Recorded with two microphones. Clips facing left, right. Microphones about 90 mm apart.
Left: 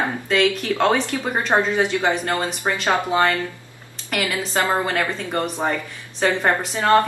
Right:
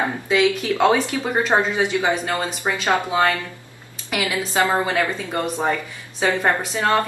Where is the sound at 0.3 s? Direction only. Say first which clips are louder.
Right 1 dB; 10° right (ahead or behind).